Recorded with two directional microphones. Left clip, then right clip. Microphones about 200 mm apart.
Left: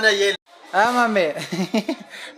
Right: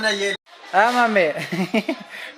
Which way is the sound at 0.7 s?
5° right (ahead or behind).